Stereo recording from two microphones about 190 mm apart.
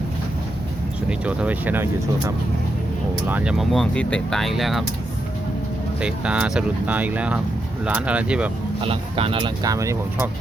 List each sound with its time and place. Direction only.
1.2 s speech: 5° right (ahead or behind)
6.0 s speech: 5° right (ahead or behind)
8.8 s speech: 30° right (ahead or behind)